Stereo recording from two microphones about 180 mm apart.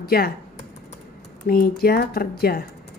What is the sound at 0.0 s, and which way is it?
Speech, 60° left (ahead or behind).